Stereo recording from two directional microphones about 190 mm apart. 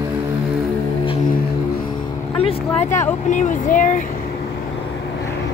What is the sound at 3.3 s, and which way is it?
Speech, 40° left (ahead or behind).